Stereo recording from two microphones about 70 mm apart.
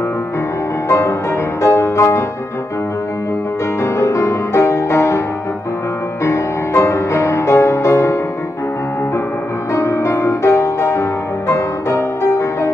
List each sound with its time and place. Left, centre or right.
0.8 s music: left
3.8 s music: left
6.2 s music: left
9.8 s music: left